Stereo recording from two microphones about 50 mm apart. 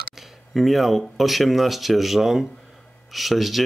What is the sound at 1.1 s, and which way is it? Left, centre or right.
Speech, centre.